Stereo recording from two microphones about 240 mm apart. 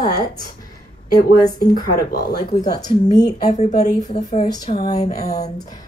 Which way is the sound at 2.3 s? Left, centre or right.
Centre.